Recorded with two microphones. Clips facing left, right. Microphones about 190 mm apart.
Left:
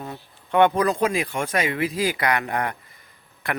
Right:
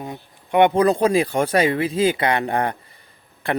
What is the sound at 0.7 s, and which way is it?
Speech, 30° right (ahead or behind).